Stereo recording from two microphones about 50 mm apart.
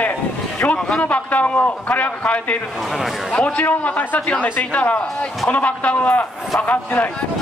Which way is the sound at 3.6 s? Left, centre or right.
Left.